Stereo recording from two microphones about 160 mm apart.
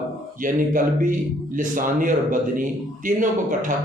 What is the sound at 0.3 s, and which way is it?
Speech, 55° right (ahead or behind).